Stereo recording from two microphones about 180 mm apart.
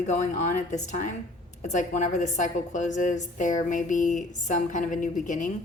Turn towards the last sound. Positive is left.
turn(degrees=45)  # may be behind; listen again after turning